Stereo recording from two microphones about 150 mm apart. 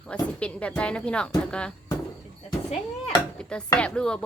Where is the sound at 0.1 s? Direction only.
10° left (ahead or behind).